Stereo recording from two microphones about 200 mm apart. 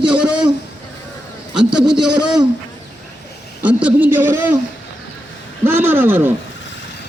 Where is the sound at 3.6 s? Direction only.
10° right (ahead or behind).